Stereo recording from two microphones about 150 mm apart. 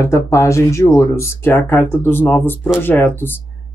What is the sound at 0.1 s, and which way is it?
Speech, 20° left (ahead or behind).